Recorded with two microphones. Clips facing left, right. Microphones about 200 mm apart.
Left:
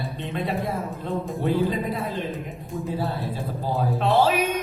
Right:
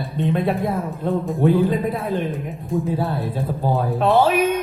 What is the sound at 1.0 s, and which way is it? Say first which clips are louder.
Speech: right 7 dB; 50° right (ahead or behind).